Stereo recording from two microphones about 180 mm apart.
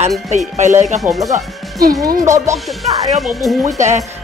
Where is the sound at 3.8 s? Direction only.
40° right (ahead or behind).